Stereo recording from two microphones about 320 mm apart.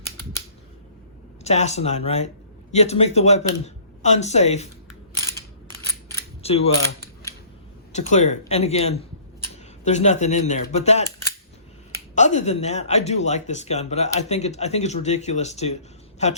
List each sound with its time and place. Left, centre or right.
1.5 s speech: left
6.4 s speech: centre
7.9 s speech: left
12.1 s speech: left